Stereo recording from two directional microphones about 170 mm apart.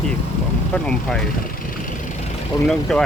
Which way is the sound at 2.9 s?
Centre (ahead or behind).